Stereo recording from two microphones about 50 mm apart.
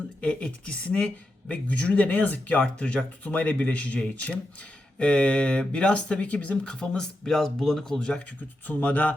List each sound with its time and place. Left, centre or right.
0.2 s speech: left
7.3 s speech: centre
8.6 s speech: left